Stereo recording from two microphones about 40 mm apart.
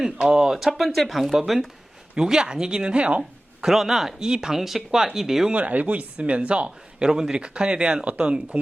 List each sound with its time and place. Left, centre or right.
0.0 s speech: centre
2.1 s speech: centre
3.6 s speech: centre
5.5 s speech: right
7.1 s speech: centre